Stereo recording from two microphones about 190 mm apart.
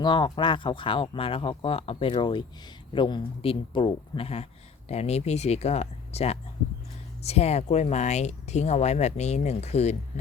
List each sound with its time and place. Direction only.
0.0 s speech: 25° left (ahead or behind)